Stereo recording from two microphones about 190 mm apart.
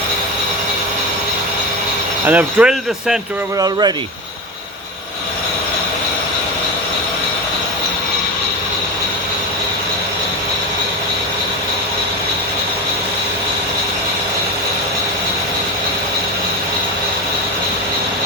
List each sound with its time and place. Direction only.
2.2 s speech: 5° right (ahead or behind)
3.6 s speech: 20° right (ahead or behind)